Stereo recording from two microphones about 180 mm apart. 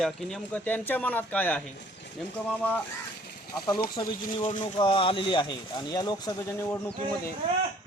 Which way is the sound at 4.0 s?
25° left (ahead or behind).